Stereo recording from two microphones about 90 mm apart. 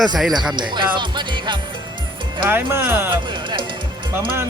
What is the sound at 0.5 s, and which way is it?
Music, 60° right (ahead or behind).